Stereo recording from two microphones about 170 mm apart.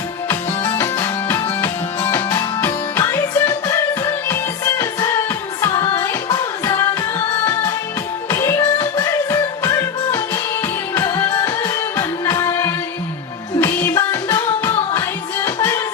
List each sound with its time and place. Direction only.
0.8 s music: 15° left (ahead or behind)
8.3 s music: 15° left (ahead or behind)